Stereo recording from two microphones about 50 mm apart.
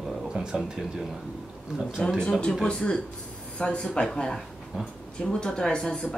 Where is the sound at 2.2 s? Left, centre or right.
Centre.